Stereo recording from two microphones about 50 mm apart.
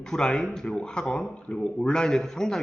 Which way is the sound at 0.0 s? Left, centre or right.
Centre.